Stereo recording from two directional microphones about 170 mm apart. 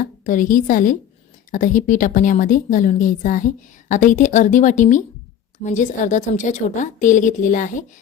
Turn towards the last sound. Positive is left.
turn(degrees=50)  # may be behind; listen again after turning